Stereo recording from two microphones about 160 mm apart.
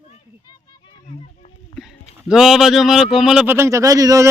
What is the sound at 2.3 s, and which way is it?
Speech, centre (ahead or behind).